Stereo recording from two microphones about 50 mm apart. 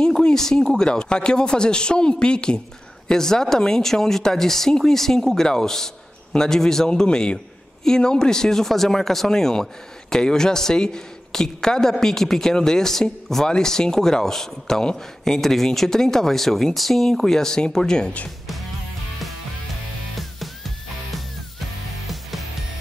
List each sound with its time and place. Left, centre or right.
0.0 s speech: centre
20.2 s music: centre